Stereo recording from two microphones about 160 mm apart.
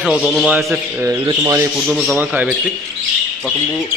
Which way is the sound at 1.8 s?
5° right (ahead or behind).